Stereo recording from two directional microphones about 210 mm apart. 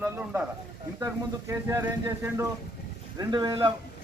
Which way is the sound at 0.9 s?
15° right (ahead or behind).